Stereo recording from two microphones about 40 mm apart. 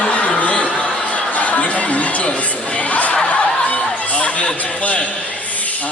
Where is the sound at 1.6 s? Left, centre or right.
Left.